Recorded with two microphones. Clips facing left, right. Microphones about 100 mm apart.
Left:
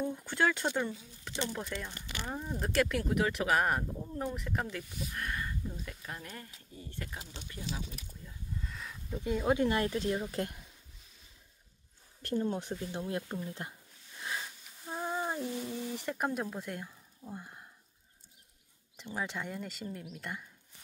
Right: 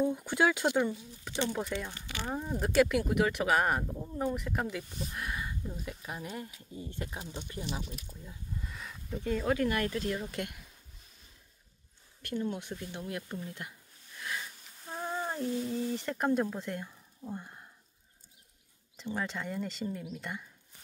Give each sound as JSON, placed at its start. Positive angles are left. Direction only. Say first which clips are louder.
{"t": 0.0, "sound": "speech", "louder": "right 3 dB", "side_deg": -10}
{"t": 8.6, "sound": "a sound", "louder": "right 1 dB", "side_deg": 0}
{"t": 9.2, "sound": "speech", "louder": "left 1 dB", "side_deg": 15}
{"t": 12.2, "sound": "speech", "louder": "left 2 dB", "side_deg": 35}
{"t": 12.9, "sound": "speech", "louder": "left 3 dB", "side_deg": 25}
{"t": 13.5, "sound": "a sound", "louder": "left 2 dB", "side_deg": 25}
{"t": 14.9, "sound": "a sound", "louder": "left 1 dB", "side_deg": 10}
{"t": 15.7, "sound": "speech", "louder": "right 4 dB", "side_deg": 15}
{"t": 19.0, "sound": "speech", "louder": "right 2 dB", "side_deg": 5}